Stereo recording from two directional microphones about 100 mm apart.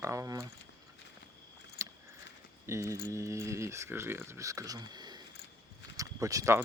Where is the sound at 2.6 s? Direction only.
30° right (ahead or behind).